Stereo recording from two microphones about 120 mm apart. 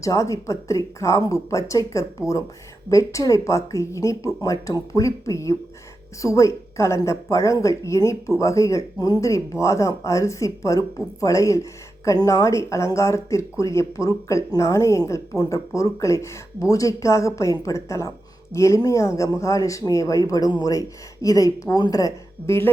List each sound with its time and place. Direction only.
0.0 s speech: 25° left (ahead or behind)